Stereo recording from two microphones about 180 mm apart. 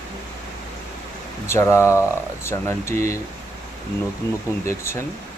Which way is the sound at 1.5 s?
15° left (ahead or behind).